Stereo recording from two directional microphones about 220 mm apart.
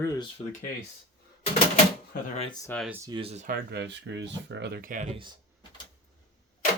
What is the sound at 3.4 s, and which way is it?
Speech, 45° right (ahead or behind).